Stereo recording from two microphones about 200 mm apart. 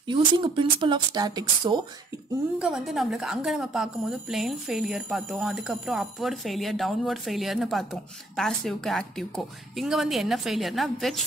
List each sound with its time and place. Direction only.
0.0 s speech: 25° right (ahead or behind)
2.6 s a woman's voice: centre (ahead or behind)